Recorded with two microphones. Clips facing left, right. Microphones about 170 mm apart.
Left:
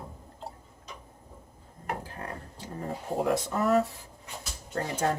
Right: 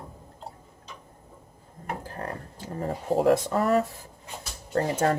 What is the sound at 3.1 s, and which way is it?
Speech, 30° right (ahead or behind).